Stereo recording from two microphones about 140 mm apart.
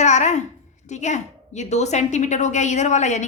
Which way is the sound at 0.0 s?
55° left (ahead or behind).